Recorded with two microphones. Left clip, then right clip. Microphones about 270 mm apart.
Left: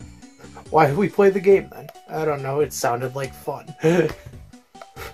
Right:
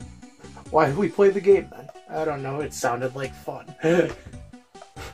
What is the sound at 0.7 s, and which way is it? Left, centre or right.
Speech, left.